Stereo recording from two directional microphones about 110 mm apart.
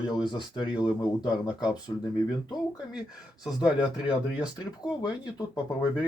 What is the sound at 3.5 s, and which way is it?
Speech, 5° right (ahead or behind).